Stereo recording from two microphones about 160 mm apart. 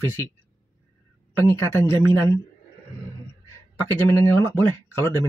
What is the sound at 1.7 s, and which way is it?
Speech, 15° left (ahead or behind).